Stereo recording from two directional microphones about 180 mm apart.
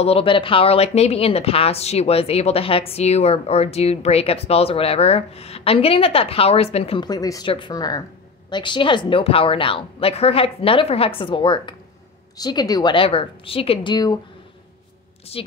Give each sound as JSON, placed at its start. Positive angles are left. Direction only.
{"t": 0.0, "sound": "a woman's voice", "side_deg": 30}
{"t": 15.3, "sound": "speech", "side_deg": 35}